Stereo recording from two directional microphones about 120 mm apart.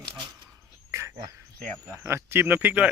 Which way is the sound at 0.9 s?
25° right (ahead or behind).